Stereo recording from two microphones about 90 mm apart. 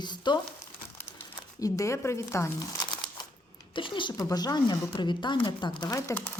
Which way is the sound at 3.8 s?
70° left (ahead or behind).